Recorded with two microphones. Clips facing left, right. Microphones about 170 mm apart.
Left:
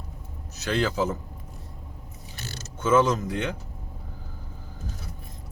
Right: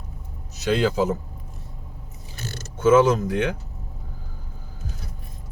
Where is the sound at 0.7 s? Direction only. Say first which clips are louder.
Right 4 dB; 10° right (ahead or behind).